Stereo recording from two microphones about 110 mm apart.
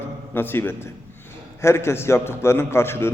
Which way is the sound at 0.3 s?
20° left (ahead or behind).